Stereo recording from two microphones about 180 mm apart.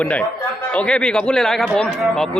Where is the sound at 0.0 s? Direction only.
5° left (ahead or behind).